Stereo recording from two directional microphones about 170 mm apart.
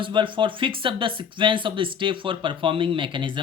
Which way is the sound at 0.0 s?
30° right (ahead or behind).